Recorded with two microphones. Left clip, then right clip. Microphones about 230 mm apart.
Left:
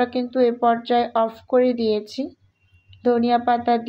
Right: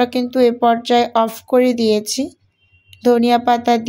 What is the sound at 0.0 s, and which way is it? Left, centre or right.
Speech, right.